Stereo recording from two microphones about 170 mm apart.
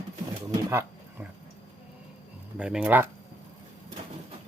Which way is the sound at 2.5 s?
5° right (ahead or behind).